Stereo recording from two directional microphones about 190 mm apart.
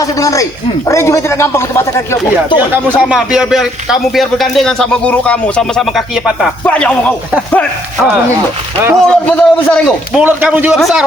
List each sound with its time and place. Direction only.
0.0 s speech: 15° left (ahead or behind)
3.0 s speech: 5° right (ahead or behind)
10.2 s a man's voice: 10° right (ahead or behind)